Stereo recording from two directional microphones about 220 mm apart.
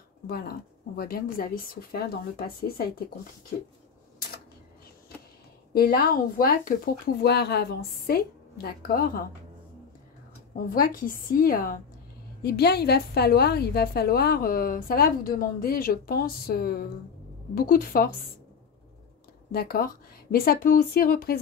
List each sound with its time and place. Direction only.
0.3 s a woman's voice: 45° left (ahead or behind)
5.7 s a woman's voice: 45° left (ahead or behind)
10.5 s a woman's voice: 40° left (ahead or behind)
19.5 s a woman's voice: 45° left (ahead or behind)